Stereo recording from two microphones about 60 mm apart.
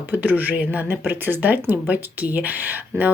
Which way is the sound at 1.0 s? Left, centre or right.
Right.